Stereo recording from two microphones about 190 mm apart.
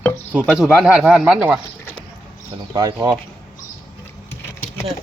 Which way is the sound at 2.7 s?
20° right (ahead or behind).